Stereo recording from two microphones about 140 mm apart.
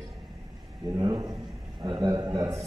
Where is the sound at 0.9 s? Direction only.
30° right (ahead or behind).